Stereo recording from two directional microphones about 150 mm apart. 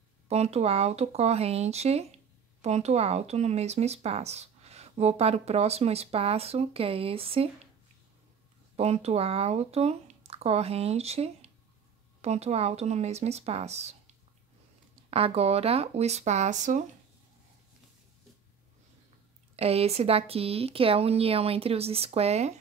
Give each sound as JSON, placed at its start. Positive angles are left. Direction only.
{"t": 0.3, "sound": "speech", "side_deg": -45}
{"t": 8.7, "sound": "speech", "side_deg": -45}
{"t": 19.5, "sound": "speech", "side_deg": -45}